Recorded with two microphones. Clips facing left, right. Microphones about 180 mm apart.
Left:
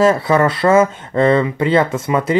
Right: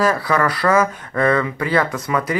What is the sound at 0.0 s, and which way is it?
Speech, 25° left (ahead or behind).